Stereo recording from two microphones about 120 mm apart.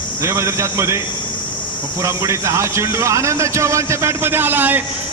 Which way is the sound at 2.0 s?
25° right (ahead or behind).